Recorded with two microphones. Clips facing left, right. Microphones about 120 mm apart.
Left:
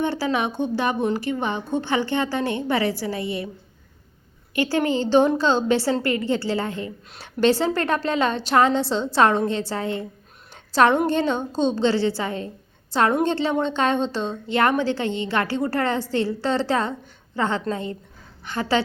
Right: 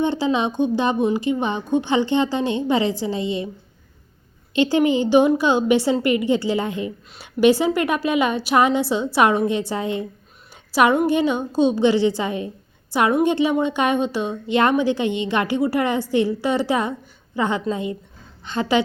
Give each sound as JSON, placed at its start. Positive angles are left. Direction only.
{"t": 0.0, "sound": "a woman's voice", "side_deg": -20}
{"t": 4.5, "sound": "a woman's voice", "side_deg": -20}